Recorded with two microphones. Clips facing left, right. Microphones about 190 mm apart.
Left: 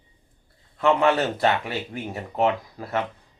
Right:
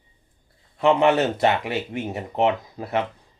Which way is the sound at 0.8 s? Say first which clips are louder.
Right 2 dB; 20° right (ahead or behind).